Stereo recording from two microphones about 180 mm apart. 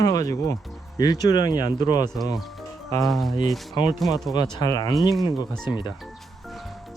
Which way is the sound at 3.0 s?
Centre (ahead or behind).